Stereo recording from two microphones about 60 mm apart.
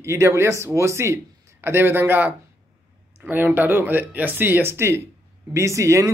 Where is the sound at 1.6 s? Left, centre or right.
Right.